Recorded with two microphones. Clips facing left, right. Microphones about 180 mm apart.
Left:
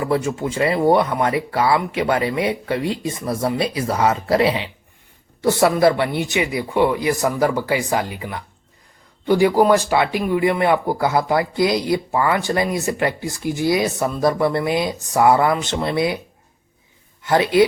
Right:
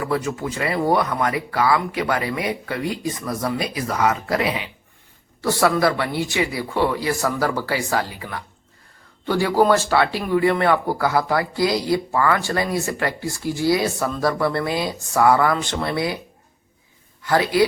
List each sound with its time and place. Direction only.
0.0 s speech: 25° left (ahead or behind)
17.2 s speech: 20° left (ahead or behind)